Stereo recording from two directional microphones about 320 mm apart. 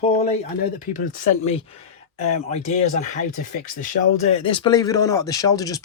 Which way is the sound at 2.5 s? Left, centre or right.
Left.